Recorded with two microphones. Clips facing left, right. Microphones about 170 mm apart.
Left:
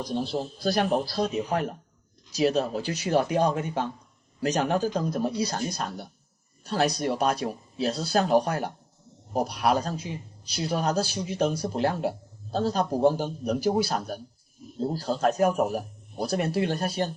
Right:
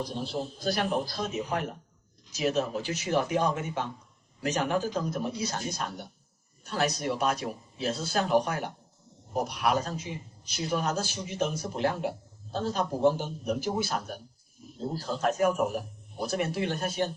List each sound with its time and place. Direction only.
0.0 s a man's voice: 35° left (ahead or behind)
2.3 s a man's voice: 35° left (ahead or behind)